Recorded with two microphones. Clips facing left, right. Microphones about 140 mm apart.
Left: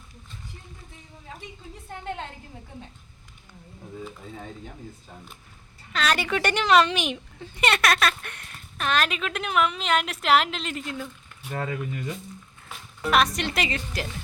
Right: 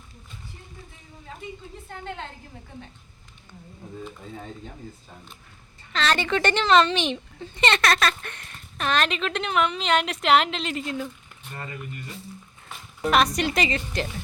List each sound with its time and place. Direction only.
4.0 s a woman's voice: centre (ahead or behind)
5.9 s a woman's voice: 5° left (ahead or behind)
11.5 s speech: 90° left
12.6 s speech: centre (ahead or behind)